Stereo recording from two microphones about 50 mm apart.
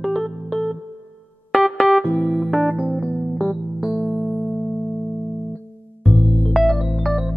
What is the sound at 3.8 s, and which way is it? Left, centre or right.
Electric piano, centre.